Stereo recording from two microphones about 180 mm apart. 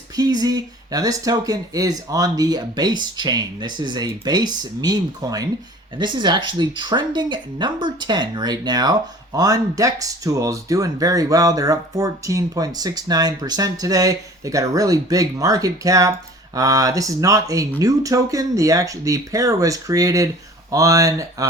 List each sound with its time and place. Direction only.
0.2 s speech: 20° right (ahead or behind)